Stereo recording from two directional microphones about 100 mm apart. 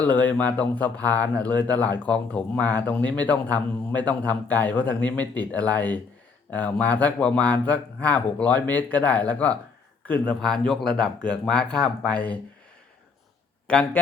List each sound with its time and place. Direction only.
0.0 s speech: 15° left (ahead or behind)
13.7 s speech: 10° left (ahead or behind)